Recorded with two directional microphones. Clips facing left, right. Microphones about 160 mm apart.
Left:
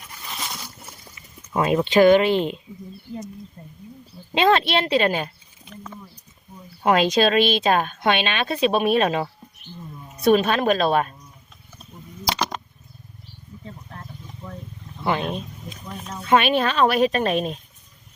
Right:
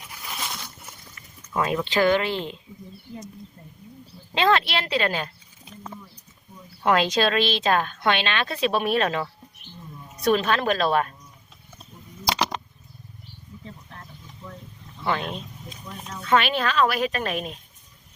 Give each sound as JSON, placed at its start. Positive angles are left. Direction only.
{"t": 0.1, "sound": "a sound", "side_deg": -5}
{"t": 1.5, "sound": "a woman's voice", "side_deg": 25}
{"t": 4.4, "sound": "a woman's voice", "side_deg": 20}
{"t": 6.8, "sound": "a woman's voice", "side_deg": 20}
{"t": 13.7, "sound": "wild animals", "side_deg": 40}
{"t": 15.0, "sound": "a woman's voice", "side_deg": 20}